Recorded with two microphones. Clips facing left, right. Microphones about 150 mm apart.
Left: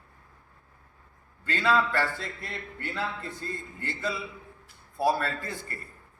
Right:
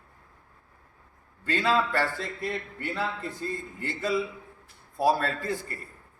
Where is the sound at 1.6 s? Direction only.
25° right (ahead or behind).